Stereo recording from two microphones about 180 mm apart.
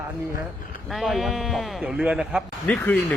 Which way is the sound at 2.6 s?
10° left (ahead or behind).